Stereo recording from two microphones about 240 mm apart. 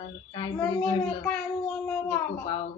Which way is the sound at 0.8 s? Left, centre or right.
Centre.